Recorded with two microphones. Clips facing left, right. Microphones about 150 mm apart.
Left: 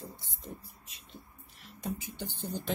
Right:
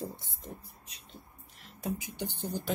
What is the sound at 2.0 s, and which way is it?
Speech, 15° right (ahead or behind).